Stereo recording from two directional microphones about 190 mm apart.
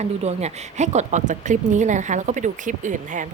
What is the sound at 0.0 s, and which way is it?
Speech, 35° right (ahead or behind).